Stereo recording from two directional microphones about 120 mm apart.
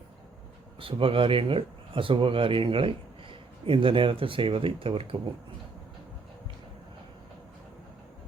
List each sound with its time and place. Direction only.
0.8 s speech: 50° right (ahead or behind)